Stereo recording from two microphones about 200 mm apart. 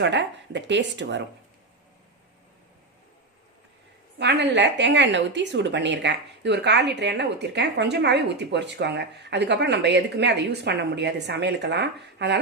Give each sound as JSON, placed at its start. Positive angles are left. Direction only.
{"t": 0.0, "sound": "a woman's voice", "side_deg": -60}
{"t": 4.2, "sound": "a woman's voice", "side_deg": -60}